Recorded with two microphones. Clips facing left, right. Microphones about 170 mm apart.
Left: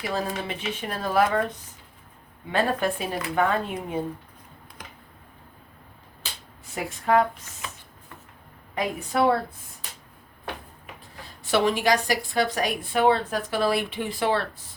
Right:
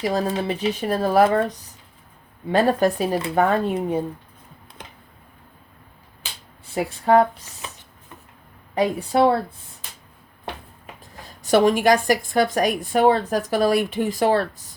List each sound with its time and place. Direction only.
0.3 s speech: 35° right (ahead or behind)
2.5 s speech: 40° right (ahead or behind)
4.8 s a sound: 25° right (ahead or behind)
6.7 s speech: 30° right (ahead or behind)
8.7 s speech: 30° right (ahead or behind)
11.4 s a woman's voice: 45° right (ahead or behind)